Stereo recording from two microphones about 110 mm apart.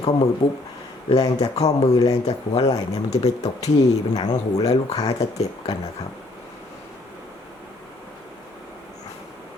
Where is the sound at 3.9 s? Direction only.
35° left (ahead or behind).